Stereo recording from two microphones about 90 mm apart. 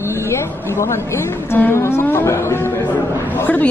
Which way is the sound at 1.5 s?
25° left (ahead or behind).